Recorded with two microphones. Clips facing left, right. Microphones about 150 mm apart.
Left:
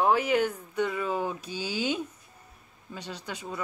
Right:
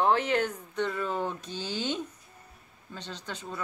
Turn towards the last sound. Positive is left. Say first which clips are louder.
# left 2 dB
turn(degrees=10)  # may be behind; listen again after turning